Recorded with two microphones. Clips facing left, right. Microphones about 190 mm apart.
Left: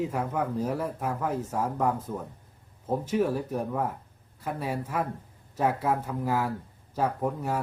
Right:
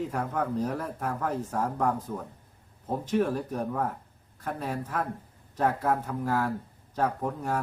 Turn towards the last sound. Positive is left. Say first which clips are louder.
# left 1 dB
turn(degrees=5)  # may be behind; listen again after turning